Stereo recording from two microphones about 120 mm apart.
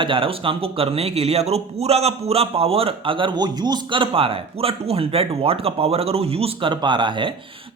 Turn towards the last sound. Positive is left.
turn(degrees=-40)  # may be behind; listen again after turning